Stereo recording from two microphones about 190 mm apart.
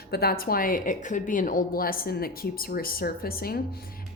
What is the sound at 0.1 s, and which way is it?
A woman's voice, 55° left (ahead or behind).